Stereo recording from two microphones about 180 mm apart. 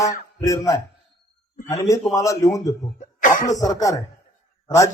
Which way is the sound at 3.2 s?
45° left (ahead or behind).